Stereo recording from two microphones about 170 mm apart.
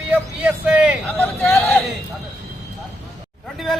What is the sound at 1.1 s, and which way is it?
Speech, 5° left (ahead or behind).